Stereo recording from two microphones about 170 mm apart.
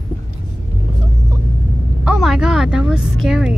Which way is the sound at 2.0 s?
Centre (ahead or behind).